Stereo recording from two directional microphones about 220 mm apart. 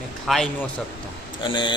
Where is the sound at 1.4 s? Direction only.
20° left (ahead or behind).